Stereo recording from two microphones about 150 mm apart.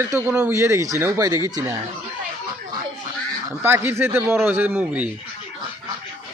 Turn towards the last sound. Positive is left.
turn(degrees=-10)  # may be behind; listen again after turning